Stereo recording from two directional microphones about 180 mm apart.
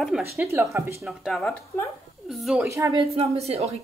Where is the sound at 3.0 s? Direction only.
35° right (ahead or behind).